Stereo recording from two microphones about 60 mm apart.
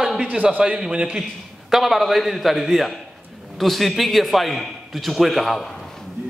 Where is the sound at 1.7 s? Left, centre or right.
Centre.